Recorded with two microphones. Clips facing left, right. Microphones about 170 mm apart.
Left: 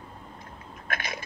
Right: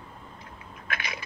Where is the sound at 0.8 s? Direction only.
50° left (ahead or behind).